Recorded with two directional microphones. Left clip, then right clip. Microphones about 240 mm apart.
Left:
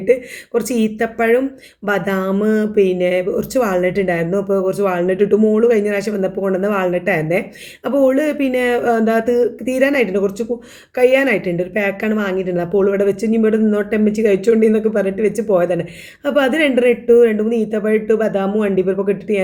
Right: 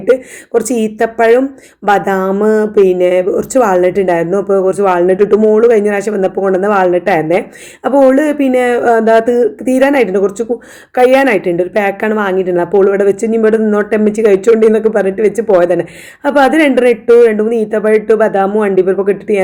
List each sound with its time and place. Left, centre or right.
0.0 s speech: centre